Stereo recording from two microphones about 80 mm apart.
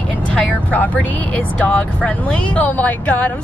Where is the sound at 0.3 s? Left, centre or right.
Centre.